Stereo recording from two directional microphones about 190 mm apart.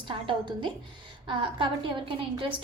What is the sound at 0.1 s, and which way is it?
A woman's voice, 25° right (ahead or behind).